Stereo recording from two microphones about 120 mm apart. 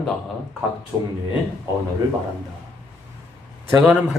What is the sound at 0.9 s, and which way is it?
Speech, 20° right (ahead or behind).